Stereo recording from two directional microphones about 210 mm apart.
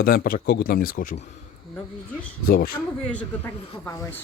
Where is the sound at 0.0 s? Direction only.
45° left (ahead or behind).